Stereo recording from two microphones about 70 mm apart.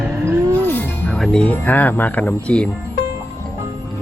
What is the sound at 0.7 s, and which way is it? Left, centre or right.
Music, left.